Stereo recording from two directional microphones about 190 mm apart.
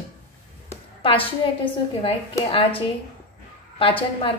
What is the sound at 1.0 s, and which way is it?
Speech, 30° left (ahead or behind).